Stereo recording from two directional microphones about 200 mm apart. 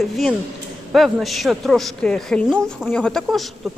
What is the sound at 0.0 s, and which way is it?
Speech, centre (ahead or behind).